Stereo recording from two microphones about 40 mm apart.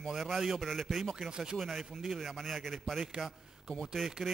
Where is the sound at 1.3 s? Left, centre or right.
Centre.